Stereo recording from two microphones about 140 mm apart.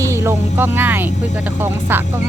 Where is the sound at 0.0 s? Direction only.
20° right (ahead or behind).